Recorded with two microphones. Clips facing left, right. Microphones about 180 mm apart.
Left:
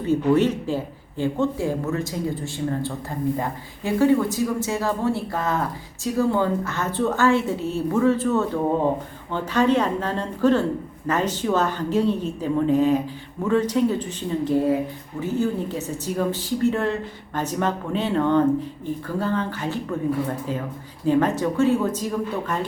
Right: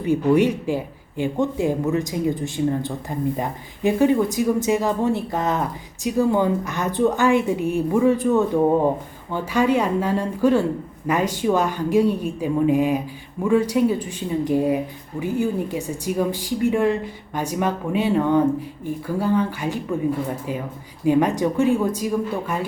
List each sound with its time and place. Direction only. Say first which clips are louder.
0.0 s speech: right 1 dB; 15° right (ahead or behind)
21.0 s speech: right 2 dB; 15° right (ahead or behind)